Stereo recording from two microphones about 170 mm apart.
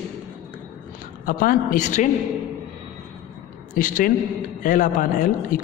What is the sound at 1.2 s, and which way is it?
Speech, 55° left (ahead or behind).